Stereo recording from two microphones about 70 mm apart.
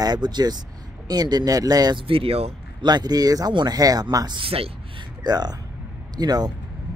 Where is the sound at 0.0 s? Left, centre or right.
Right.